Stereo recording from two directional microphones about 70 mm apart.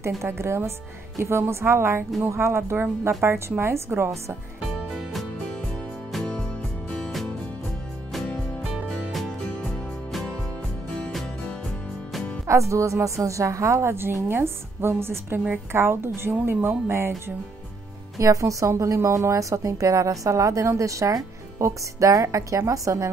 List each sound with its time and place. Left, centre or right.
0.2 s speech: right
6.9 s music: centre
8.8 s music: centre
12.4 s a woman's voice: right
18.2 s a woman's voice: right